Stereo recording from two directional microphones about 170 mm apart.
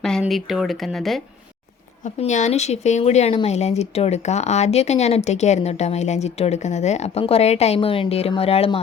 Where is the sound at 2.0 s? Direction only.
45° left (ahead or behind).